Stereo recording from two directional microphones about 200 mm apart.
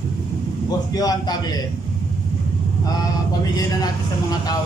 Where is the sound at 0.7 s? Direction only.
20° left (ahead or behind).